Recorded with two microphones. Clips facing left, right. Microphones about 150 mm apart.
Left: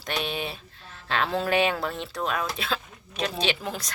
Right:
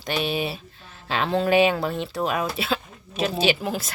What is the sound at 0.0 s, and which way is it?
Speech, 5° right (ahead or behind).